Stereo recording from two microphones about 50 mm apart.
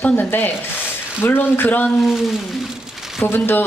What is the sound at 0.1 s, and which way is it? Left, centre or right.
A woman's voice, left.